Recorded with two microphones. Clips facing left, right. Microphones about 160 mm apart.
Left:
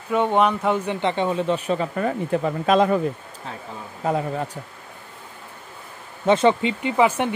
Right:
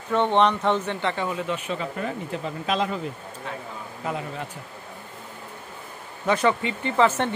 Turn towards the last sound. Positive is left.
turn(degrees=10)  # may be behind; listen again after turning